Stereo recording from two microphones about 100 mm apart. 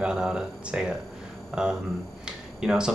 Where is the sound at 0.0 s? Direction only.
10° right (ahead or behind).